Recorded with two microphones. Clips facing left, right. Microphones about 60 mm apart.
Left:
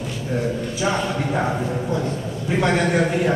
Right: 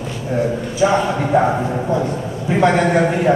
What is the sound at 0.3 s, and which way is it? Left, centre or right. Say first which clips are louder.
A man's voice: right 5 dB; centre.